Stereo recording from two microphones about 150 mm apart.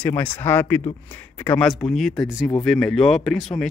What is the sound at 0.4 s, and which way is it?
Speech, 15° left (ahead or behind).